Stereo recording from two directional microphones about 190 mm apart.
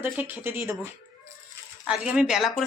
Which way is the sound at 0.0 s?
10° right (ahead or behind).